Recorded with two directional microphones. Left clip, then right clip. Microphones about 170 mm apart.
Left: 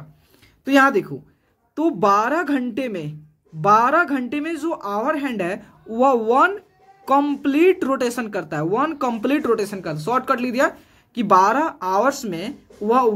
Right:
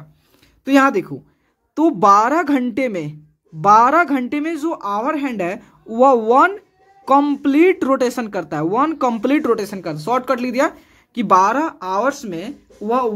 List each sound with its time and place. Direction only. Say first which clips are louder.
0.7 s a woman's voice: right 1 dB; 25° right (ahead or behind); by 13.1 s 5° right (ahead or behind)